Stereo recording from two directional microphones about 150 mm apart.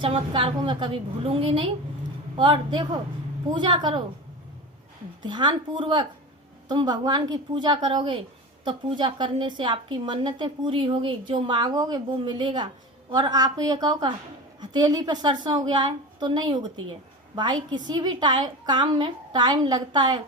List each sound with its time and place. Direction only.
0.0 s a woman's voice: 35° right (ahead or behind)
5.2 s a woman's voice: 30° right (ahead or behind)